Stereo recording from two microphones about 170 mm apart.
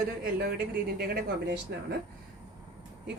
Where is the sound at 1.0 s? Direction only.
65° right (ahead or behind).